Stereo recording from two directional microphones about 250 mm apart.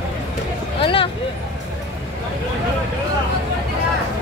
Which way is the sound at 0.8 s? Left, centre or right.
Left.